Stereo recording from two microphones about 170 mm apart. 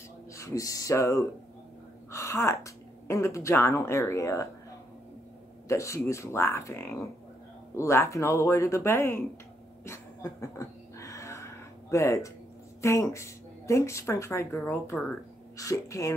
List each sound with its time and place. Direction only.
0.3 s a woman's voice: 20° left (ahead or behind)
5.7 s speech: 15° left (ahead or behind)
9.8 s a sound: 15° left (ahead or behind)
12.8 s speech: 15° left (ahead or behind)